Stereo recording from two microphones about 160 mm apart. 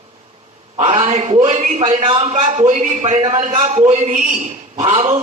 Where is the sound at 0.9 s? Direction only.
40° right (ahead or behind).